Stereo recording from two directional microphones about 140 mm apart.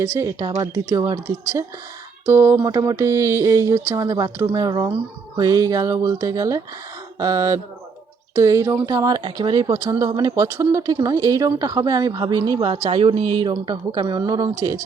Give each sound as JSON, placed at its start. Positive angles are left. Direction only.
{"t": 0.0, "sound": "speech", "side_deg": -20}